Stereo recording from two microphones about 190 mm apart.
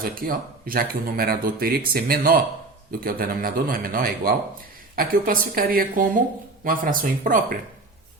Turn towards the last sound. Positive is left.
turn(degrees=-45)  # may be behind; listen again after turning